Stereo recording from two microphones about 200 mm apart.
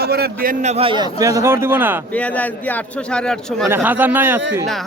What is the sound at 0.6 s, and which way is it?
A man's voice, 30° right (ahead or behind).